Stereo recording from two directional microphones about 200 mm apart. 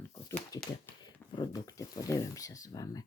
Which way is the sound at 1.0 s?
20° left (ahead or behind).